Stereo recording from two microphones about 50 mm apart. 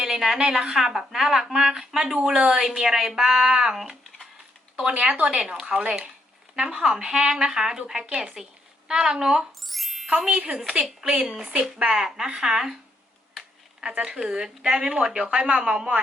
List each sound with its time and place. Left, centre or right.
0.0 s a woman's voice: centre
4.8 s a woman's voice: right
9.6 s music: centre
10.2 s a woman's voice: centre
13.8 s a woman's voice: right